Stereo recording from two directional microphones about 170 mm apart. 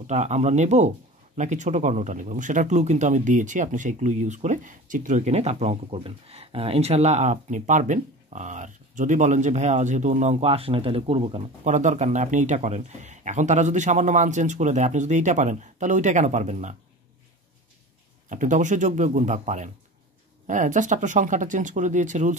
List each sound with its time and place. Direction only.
0.0 s speech: 40° right (ahead or behind)
18.3 s speech: 50° right (ahead or behind)